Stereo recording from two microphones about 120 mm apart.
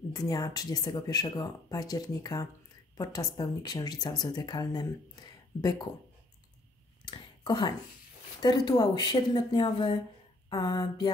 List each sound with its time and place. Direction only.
0.1 s speech: 30° left (ahead or behind)
7.1 s a sound: 40° left (ahead or behind)
8.4 s speech: 35° left (ahead or behind)